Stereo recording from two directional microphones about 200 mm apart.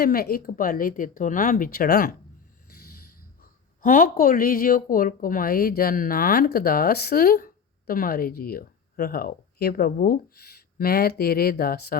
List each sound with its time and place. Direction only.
0.0 s a woman's voice: 50° left (ahead or behind)
3.8 s a woman's voice: 45° left (ahead or behind)